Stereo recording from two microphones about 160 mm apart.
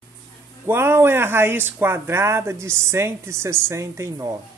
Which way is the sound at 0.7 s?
15° right (ahead or behind).